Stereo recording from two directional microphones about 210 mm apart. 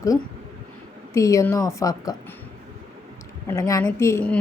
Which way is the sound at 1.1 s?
15° left (ahead or behind).